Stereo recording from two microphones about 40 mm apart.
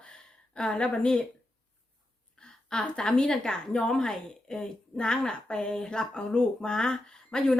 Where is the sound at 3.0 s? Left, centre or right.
Centre.